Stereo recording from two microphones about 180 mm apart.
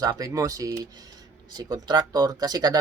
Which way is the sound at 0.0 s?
20° right (ahead or behind).